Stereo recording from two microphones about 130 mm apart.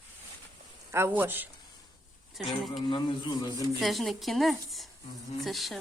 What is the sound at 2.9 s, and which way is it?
Speech, 35° left (ahead or behind).